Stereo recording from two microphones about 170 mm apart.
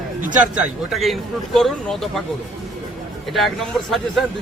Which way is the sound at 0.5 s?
5° right (ahead or behind).